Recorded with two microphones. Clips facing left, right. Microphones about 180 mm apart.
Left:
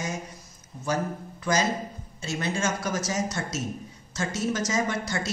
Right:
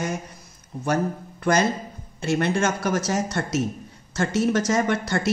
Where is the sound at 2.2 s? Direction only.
60° right (ahead or behind).